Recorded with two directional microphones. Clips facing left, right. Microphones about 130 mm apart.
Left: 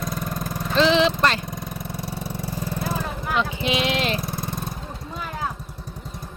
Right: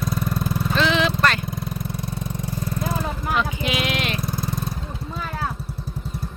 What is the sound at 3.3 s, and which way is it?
Sheep, 30° left (ahead or behind).